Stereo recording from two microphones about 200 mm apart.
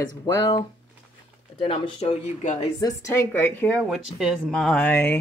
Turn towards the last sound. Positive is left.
turn(degrees=10)  # may be behind; listen again after turning